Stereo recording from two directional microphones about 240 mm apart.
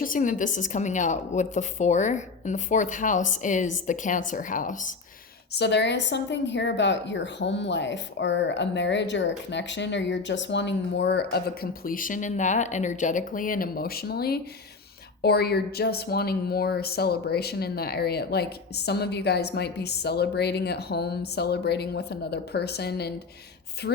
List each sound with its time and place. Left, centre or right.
0.0 s a woman's voice: left
5.5 s a woman's voice: left